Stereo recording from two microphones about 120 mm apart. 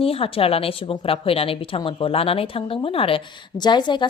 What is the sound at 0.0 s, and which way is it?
A woman's voice, 50° left (ahead or behind).